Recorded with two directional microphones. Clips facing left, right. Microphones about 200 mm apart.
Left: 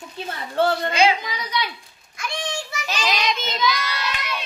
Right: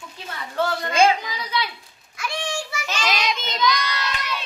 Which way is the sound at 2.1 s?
5° right (ahead or behind).